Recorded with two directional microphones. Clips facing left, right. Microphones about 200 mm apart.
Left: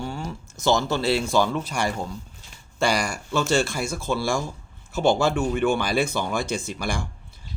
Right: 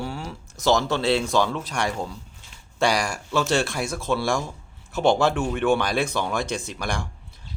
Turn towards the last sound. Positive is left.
turn(degrees=0)  # may be behind; listen again after turning